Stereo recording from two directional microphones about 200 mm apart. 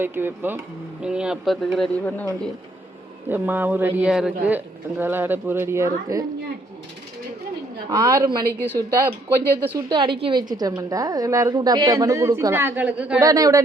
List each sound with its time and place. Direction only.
0.0 s a woman's voice: 10° right (ahead or behind); by 2.5 s 10° left (ahead or behind)
3.2 s a woman's voice: 10° right (ahead or behind)
7.9 s a woman's voice: 20° right (ahead or behind)
8.4 s speech: 10° left (ahead or behind)
8.9 s a woman's voice: 15° right (ahead or behind)
13.1 s a woman's voice: 15° right (ahead or behind)